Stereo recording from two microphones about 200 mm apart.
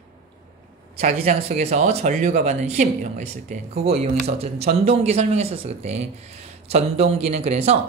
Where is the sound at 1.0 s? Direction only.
35° right (ahead or behind).